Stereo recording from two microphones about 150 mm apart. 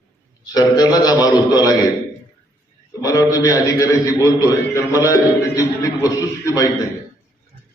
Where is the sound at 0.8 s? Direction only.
25° left (ahead or behind).